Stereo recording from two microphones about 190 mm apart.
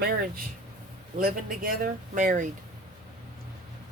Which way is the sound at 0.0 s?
55° right (ahead or behind).